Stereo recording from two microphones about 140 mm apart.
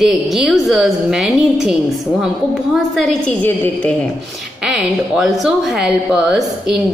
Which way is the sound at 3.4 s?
15° left (ahead or behind).